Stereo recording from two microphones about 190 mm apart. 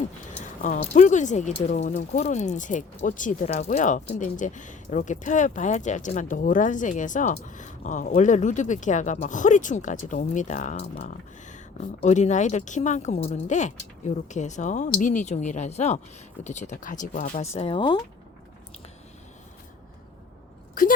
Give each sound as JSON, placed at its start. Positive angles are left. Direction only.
{"t": 0.3, "sound": "speech", "side_deg": 40}